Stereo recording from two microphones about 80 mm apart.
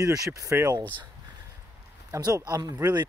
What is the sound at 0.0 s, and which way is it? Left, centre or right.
Speech, right.